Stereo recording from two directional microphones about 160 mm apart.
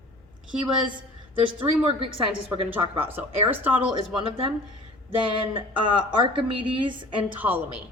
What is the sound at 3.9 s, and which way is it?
A woman's voice, 30° right (ahead or behind).